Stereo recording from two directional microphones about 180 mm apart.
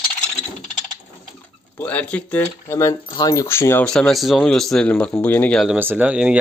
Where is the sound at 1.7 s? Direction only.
10° left (ahead or behind).